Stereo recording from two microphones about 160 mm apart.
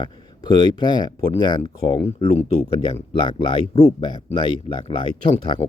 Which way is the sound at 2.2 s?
40° left (ahead or behind).